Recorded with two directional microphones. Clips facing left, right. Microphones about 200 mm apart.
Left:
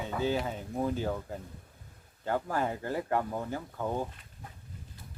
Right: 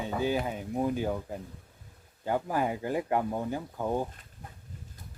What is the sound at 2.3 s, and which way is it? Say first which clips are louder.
Speech: right 2 dB; 15° right (ahead or behind).